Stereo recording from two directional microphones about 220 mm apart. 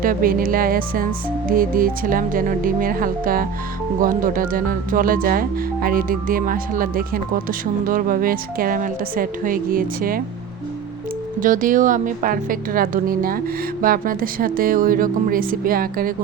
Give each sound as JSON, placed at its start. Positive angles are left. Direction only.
{"t": 0.0, "sound": "speech", "side_deg": -40}
{"t": 11.4, "sound": "speech", "side_deg": -35}